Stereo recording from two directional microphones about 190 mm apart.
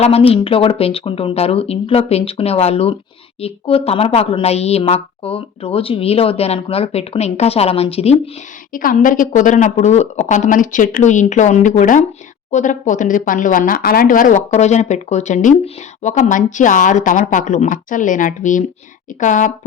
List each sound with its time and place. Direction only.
0.0 s a woman's voice: 30° left (ahead or behind)
8.7 s a woman's voice: 45° left (ahead or behind)